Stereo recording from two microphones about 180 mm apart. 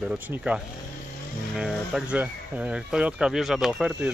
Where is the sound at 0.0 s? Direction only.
5° right (ahead or behind).